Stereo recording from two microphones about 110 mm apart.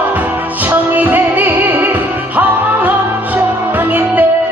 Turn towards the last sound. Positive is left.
turn(degrees=-15)  # may be behind; listen again after turning